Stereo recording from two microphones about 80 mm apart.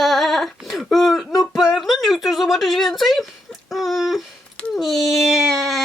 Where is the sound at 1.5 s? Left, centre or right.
Centre.